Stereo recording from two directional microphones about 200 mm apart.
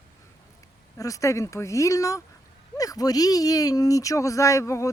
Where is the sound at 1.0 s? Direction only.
15° left (ahead or behind).